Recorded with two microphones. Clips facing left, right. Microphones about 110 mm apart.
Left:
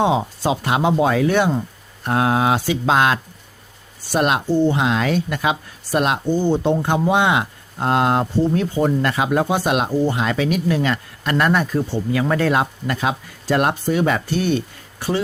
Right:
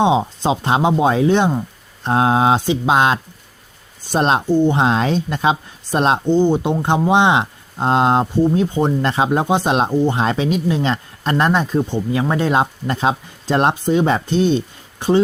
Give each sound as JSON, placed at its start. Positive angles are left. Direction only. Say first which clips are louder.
{"t": 0.0, "sound": "speech", "louder": "right 3 dB", "side_deg": -20}
{"t": 4.4, "sound": "speech", "louder": "right 2 dB", "side_deg": -15}
{"t": 4.8, "sound": "speech", "louder": "right 2 dB", "side_deg": -30}